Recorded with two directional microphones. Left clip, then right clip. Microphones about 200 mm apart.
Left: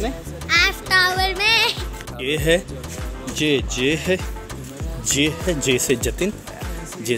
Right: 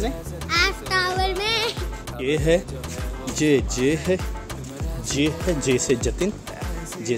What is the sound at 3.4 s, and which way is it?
Speech, 20° right (ahead or behind).